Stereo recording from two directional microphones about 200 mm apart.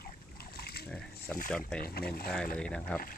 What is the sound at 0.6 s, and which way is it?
Splash, 50° left (ahead or behind).